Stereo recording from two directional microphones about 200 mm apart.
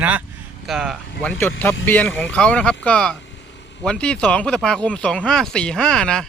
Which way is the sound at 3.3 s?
60° left (ahead or behind).